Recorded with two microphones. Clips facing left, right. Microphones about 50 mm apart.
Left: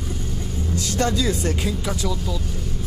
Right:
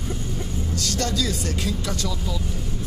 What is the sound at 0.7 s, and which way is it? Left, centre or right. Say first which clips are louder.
Speech: left 4 dB; left.